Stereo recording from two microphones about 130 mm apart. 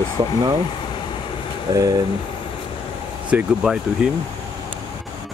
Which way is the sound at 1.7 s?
30° right (ahead or behind).